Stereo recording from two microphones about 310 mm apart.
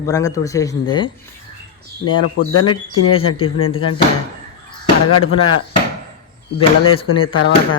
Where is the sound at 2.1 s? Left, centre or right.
Left.